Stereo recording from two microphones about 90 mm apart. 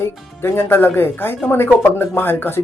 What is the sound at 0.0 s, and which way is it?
Speech, 30° left (ahead or behind).